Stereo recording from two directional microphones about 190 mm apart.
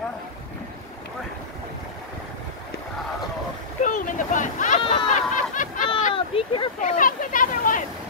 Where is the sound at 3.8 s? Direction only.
40° left (ahead or behind).